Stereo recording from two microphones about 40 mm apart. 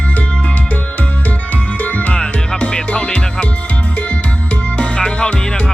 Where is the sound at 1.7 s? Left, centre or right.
Left.